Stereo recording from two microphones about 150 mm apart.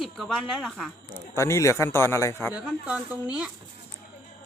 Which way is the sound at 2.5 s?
10° right (ahead or behind).